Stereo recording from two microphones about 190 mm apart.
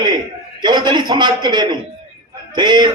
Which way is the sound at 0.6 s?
25° right (ahead or behind).